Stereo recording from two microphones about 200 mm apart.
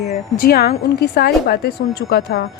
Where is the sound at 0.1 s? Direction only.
45° left (ahead or behind).